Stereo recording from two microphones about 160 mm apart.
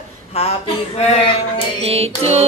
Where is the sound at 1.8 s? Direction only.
40° right (ahead or behind).